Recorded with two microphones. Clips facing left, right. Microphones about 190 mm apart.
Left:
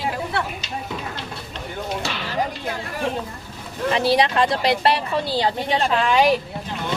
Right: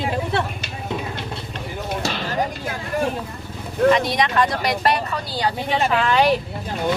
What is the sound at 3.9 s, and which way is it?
Speech, 30° left (ahead or behind).